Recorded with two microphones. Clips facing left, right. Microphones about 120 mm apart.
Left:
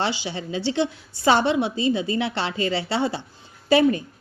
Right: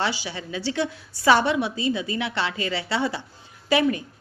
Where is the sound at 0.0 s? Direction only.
25° left (ahead or behind).